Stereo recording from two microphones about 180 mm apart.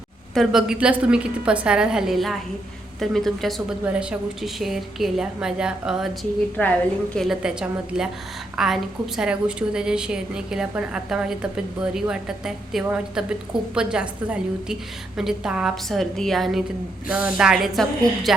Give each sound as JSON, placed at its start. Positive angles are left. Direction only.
{"t": 0.3, "sound": "a woman's voice", "side_deg": -5}
{"t": 6.6, "sound": "a woman's voice", "side_deg": 5}